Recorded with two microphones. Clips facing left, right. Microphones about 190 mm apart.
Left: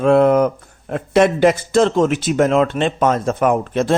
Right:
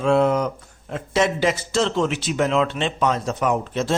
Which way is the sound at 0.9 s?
55° left (ahead or behind).